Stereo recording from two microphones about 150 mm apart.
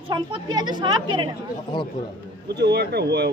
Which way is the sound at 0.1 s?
30° right (ahead or behind).